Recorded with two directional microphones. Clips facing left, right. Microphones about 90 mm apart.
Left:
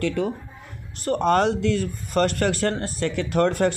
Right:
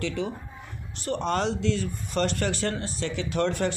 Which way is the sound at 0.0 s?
45° left (ahead or behind).